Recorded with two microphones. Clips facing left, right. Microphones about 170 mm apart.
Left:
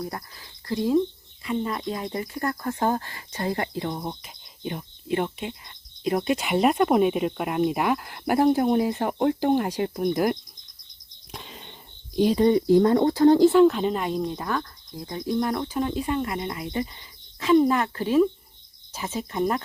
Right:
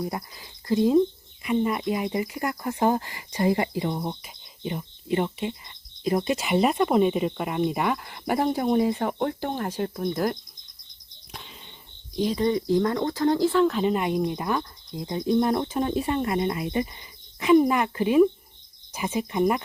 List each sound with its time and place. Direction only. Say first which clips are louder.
0.0 s speech: right 3 dB; 10° right (ahead or behind); by 10.3 s 15° left (ahead or behind)
12.2 s speech: left 5 dB; 30° left (ahead or behind)
13.7 s speech: even; centre (ahead or behind)